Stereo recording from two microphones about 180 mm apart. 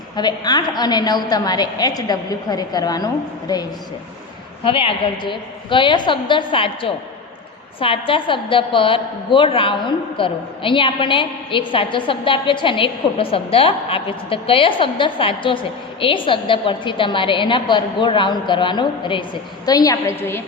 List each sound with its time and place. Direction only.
0.2 s a woman's voice: 25° left (ahead or behind)